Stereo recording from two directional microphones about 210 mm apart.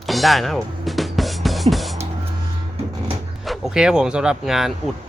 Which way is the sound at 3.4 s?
Centre (ahead or behind).